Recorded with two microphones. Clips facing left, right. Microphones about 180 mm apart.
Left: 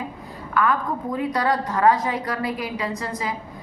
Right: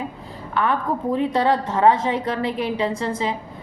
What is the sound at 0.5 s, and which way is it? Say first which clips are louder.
A woman's voice: even; 25° right (ahead or behind).